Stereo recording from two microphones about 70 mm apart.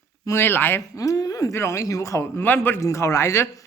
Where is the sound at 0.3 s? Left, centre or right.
Left.